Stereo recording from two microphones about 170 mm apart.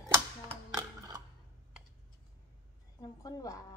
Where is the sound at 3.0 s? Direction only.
20° left (ahead or behind).